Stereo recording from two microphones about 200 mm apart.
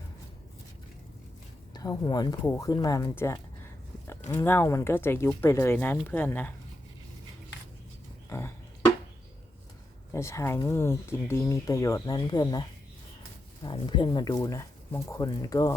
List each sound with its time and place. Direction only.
1.7 s speech: 20° left (ahead or behind)
8.3 s a sound: 10° left (ahead or behind)
10.1 s speech: 15° left (ahead or behind)